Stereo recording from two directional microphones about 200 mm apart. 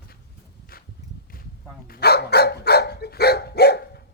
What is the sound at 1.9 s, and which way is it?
Dog, 50° left (ahead or behind).